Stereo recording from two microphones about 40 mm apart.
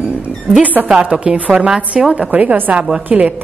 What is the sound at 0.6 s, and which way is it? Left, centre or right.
Speech, right.